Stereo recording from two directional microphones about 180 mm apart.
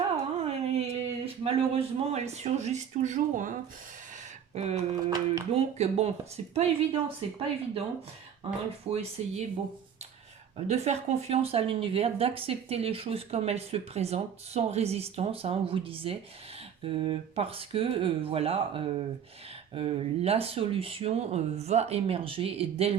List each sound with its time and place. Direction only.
0.3 s speech: 35° right (ahead or behind)
4.5 s speech: 40° right (ahead or behind)
8.9 s speech: 35° right (ahead or behind)
10.7 s speech: 35° right (ahead or behind)